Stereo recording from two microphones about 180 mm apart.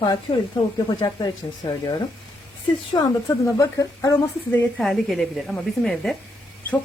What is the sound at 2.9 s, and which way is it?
Speech, 20° left (ahead or behind).